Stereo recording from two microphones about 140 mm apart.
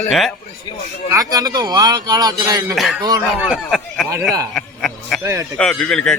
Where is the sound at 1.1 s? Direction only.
25° right (ahead or behind).